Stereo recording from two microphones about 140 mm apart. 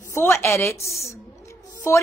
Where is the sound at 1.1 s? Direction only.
20° left (ahead or behind).